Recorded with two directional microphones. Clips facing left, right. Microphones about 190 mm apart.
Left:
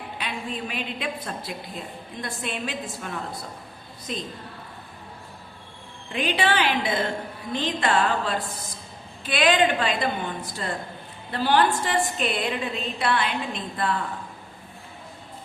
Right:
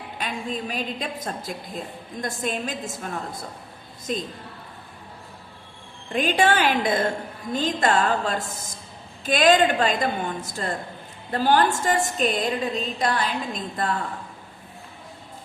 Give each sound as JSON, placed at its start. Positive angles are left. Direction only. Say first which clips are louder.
{"t": 0.2, "sound": "a woman's voice", "louder": "right 3 dB", "side_deg": -40}
{"t": 6.1, "sound": "a woman's voice", "louder": "right 3 dB", "side_deg": -45}